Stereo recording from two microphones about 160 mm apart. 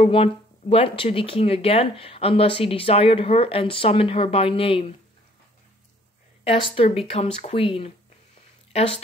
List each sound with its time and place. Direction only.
0.0 s speech: 35° left (ahead or behind)
6.4 s speech: 35° left (ahead or behind)